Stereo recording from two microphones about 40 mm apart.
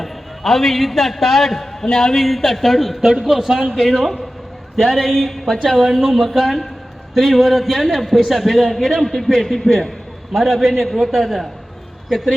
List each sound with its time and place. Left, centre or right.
0.0 s a man's voice: centre
3.0 s a man's voice: centre